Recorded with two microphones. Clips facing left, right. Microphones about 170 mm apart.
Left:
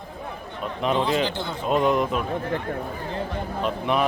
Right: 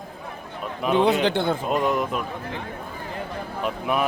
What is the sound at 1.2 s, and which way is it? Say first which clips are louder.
Speech: right 5 dB; 60° right (ahead or behind).